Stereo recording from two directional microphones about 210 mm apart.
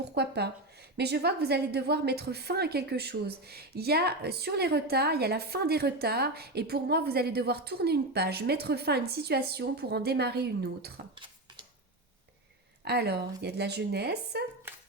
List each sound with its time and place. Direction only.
0.1 s a woman's voice: 50° right (ahead or behind)
11.1 s a sound: 25° right (ahead or behind)
12.8 s a woman's voice: 50° right (ahead or behind)